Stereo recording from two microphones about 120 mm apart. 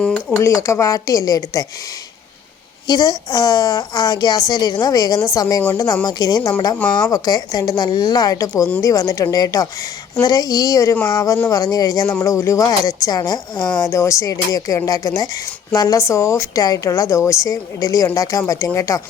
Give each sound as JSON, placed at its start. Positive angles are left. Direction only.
{"t": 0.0, "sound": "speech", "side_deg": 10}
{"t": 0.4, "sound": "speech", "side_deg": 25}
{"t": 2.8, "sound": "a woman's voice", "side_deg": 35}